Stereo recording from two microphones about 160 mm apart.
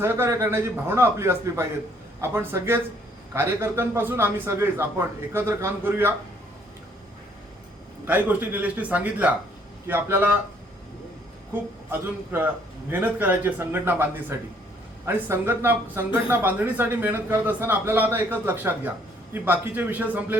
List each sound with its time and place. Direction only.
0.0 s speech: 15° right (ahead or behind)
8.0 s speech: 10° right (ahead or behind)
11.9 s speech: 15° right (ahead or behind)